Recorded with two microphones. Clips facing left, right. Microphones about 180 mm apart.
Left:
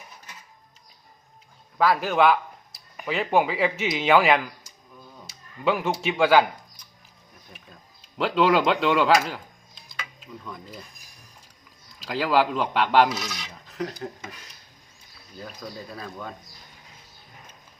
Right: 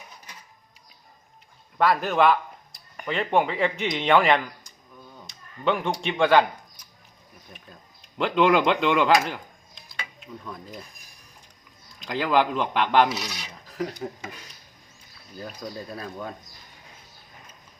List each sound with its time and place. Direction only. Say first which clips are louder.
1.8 s speech: even; centre (ahead or behind)
8.2 s speech: even; 5° left (ahead or behind)
12.0 s speech: even; 5° left (ahead or behind)
15.9 s speech: right 2 dB; 5° right (ahead or behind)